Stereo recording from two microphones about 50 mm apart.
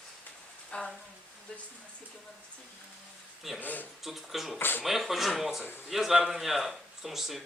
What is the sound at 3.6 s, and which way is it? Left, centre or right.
Speech, left.